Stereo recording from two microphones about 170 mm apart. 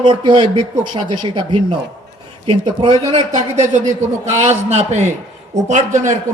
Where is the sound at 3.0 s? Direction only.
40° right (ahead or behind).